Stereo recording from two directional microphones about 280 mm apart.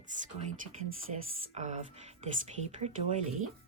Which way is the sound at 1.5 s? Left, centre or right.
Right.